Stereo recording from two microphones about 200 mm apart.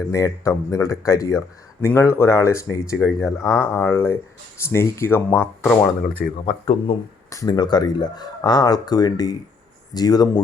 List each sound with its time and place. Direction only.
0.1 s speech: 15° left (ahead or behind)
6.4 s speech: 30° left (ahead or behind)
7.3 s speech: 20° left (ahead or behind)